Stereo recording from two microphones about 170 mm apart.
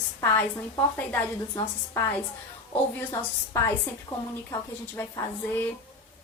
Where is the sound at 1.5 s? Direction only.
20° left (ahead or behind).